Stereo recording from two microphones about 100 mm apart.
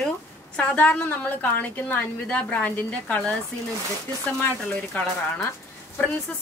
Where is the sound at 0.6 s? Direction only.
15° left (ahead or behind).